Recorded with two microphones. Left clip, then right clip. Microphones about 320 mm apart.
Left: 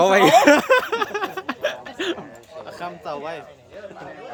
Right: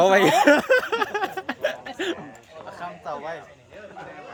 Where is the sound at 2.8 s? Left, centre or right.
Left.